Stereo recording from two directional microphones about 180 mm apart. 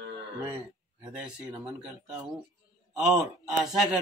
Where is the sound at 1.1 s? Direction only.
5° right (ahead or behind).